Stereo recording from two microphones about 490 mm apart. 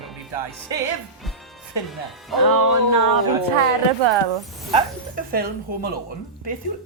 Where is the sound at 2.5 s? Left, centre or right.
Right.